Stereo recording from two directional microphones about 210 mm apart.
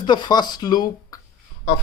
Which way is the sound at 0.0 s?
20° left (ahead or behind).